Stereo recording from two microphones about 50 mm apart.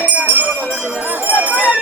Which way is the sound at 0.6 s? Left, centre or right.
Left.